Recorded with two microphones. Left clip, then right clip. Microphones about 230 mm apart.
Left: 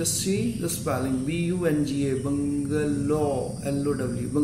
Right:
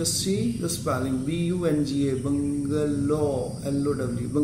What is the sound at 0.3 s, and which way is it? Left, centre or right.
A man's voice, centre.